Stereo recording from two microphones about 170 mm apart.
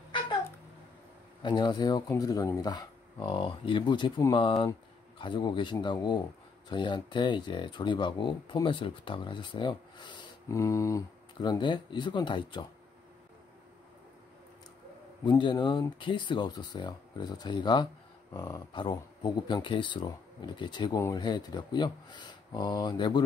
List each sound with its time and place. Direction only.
1.4 s speech: 25° left (ahead or behind)
15.2 s speech: 25° left (ahead or behind)
18.3 s speech: 15° left (ahead or behind)